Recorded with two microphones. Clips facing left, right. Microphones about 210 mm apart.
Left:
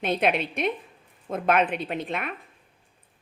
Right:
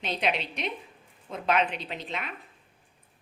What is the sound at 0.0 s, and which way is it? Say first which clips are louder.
A woman's voice: left 5 dB; 55° left (ahead or behind).